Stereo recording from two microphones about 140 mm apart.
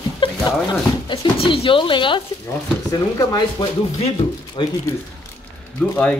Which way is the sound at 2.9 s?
25° left (ahead or behind).